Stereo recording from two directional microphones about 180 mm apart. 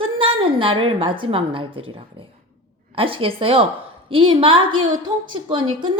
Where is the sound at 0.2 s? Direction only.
30° right (ahead or behind).